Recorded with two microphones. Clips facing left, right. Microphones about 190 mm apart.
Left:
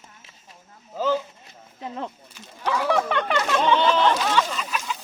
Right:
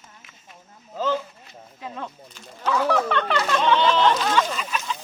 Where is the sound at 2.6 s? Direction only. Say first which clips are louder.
Right 1 dB; 15° left (ahead or behind).